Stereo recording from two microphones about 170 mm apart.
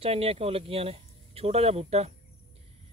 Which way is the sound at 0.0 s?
35° right (ahead or behind).